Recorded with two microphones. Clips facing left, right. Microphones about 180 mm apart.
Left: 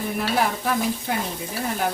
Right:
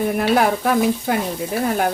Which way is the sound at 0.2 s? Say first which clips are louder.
Right 5 dB; 60° right (ahead or behind).